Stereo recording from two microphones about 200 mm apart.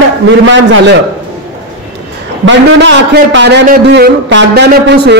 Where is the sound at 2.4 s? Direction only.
65° right (ahead or behind).